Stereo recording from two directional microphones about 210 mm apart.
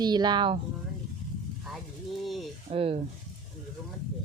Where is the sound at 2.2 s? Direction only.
Centre (ahead or behind).